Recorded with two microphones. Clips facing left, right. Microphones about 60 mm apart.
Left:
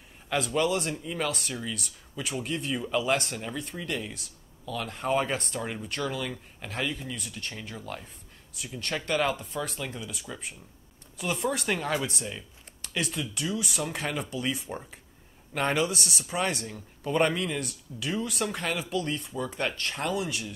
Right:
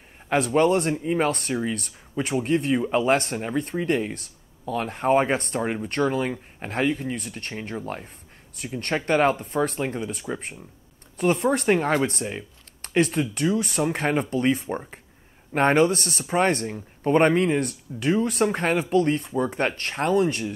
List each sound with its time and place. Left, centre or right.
0.3 s speech: right
10.2 s speech: right
11.1 s speech: right